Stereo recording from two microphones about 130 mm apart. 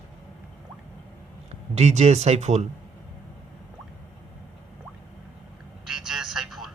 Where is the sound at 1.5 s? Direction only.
55° right (ahead or behind).